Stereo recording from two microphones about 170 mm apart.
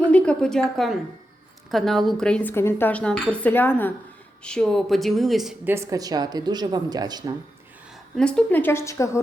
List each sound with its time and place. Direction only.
0.0 s a sound: 5° left (ahead or behind)
1.7 s a woman's voice: centre (ahead or behind)
5.7 s speech: 20° right (ahead or behind)
8.1 s a woman's voice: 5° left (ahead or behind)